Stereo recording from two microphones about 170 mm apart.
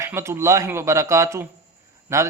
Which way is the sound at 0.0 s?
15° right (ahead or behind).